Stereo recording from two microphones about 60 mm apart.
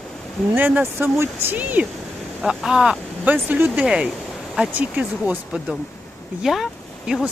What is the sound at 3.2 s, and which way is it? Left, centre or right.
Speech, right.